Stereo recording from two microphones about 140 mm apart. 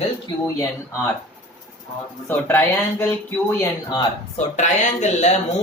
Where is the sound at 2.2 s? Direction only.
15° left (ahead or behind).